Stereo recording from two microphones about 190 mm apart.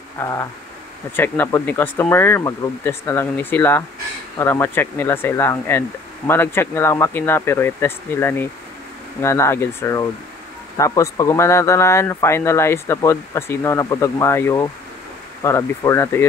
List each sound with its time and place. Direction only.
0.2 s speech: 15° left (ahead or behind)